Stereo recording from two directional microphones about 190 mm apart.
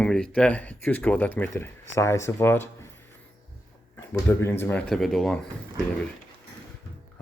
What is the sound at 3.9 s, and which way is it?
Speech, 15° left (ahead or behind).